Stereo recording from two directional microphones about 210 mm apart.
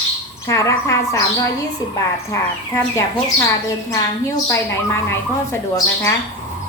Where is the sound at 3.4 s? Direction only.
15° left (ahead or behind).